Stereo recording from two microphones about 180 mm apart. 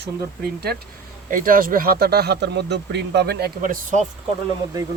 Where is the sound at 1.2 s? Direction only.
50° right (ahead or behind).